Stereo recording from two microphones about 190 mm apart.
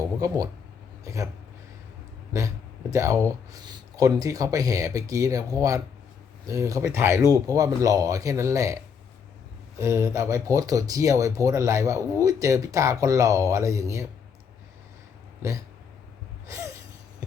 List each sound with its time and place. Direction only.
0.2 s speech: 20° right (ahead or behind)
2.9 s speech: 15° right (ahead or behind)
15.4 s speech: 15° right (ahead or behind)